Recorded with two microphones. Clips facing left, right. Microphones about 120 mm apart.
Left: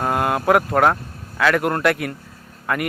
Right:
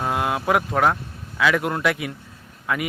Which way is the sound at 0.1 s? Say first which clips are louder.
Left 3 dB; 45° left (ahead or behind).